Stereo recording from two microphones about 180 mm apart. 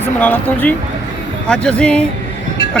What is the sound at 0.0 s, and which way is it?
A man's voice, 10° left (ahead or behind).